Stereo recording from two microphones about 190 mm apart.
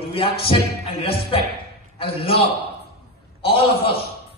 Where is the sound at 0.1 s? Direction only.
30° left (ahead or behind).